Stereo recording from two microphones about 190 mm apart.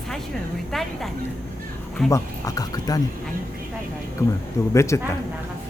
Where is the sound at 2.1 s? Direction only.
15° left (ahead or behind).